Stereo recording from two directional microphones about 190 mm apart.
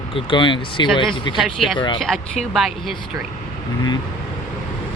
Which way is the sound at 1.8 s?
25° left (ahead or behind).